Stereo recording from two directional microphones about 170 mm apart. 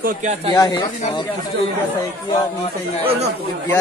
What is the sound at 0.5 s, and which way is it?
Speech, 20° left (ahead or behind).